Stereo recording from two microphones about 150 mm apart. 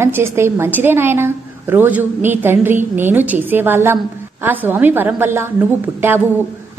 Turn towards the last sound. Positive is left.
turn(degrees=-15)  # may be behind; listen again after turning